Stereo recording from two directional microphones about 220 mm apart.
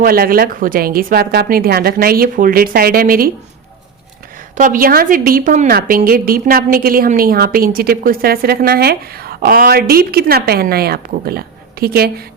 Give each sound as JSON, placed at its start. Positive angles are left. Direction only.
{"t": 0.0, "sound": "a woman's voice", "side_deg": -40}
{"t": 4.5, "sound": "a woman's voice", "side_deg": -35}